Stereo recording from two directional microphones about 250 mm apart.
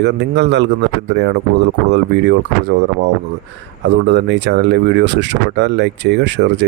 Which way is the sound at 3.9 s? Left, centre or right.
Right.